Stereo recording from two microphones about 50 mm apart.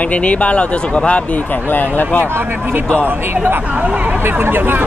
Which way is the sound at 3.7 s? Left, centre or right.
Right.